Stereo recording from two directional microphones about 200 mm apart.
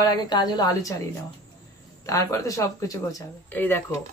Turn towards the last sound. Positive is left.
turn(degrees=10)  # may be behind; listen again after turning